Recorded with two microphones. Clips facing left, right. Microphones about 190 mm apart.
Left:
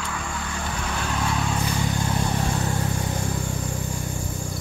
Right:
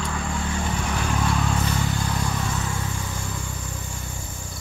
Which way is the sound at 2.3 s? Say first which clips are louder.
Left 3 dB; 35° left (ahead or behind).